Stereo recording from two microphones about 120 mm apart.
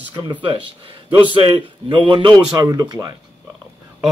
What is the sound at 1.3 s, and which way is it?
A man's voice, 45° right (ahead or behind).